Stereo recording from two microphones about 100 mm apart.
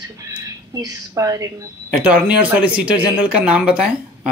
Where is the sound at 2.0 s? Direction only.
15° right (ahead or behind).